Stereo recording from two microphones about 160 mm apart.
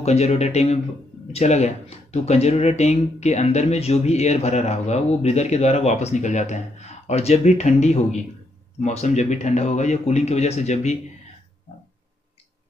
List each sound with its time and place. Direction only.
0.0 s speech: 40° left (ahead or behind)